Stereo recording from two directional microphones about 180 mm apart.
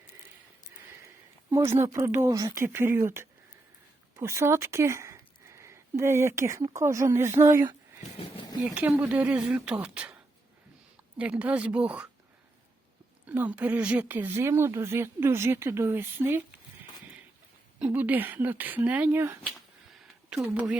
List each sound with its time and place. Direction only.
1.5 s speech: 15° right (ahead or behind)
11.2 s speech: 5° right (ahead or behind)
13.2 s speech: 10° right (ahead or behind)
17.7 s speech: 10° right (ahead or behind)